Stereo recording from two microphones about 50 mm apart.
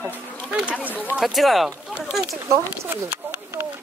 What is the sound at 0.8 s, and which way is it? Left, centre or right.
Speech, right.